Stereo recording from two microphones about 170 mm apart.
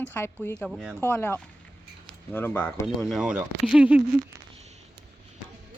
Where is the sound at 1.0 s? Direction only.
10° left (ahead or behind).